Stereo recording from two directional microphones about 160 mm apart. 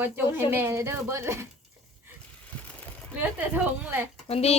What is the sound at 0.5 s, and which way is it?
Speech, 15° right (ahead or behind).